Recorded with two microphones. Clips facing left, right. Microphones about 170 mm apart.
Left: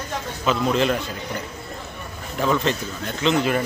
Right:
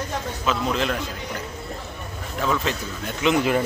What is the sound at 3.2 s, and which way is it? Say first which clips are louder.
Speech: even; 15° right (ahead or behind).